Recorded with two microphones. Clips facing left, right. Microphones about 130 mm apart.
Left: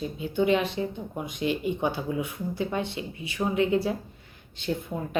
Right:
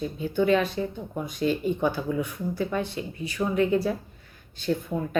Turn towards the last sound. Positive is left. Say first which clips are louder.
# right 3 dB
turn(degrees=20)  # may be behind; listen again after turning